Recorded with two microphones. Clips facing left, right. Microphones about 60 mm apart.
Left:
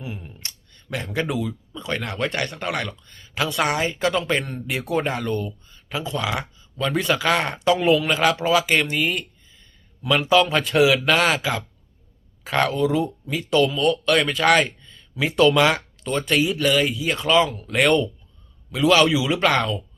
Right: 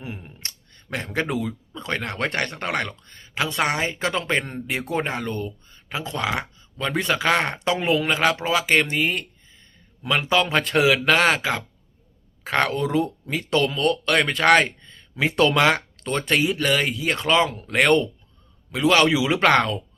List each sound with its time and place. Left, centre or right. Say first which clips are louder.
0.0 s a sound: left 1 dB; right
0.4 s speech: even; right
12.5 s a man's voice: left 2 dB; right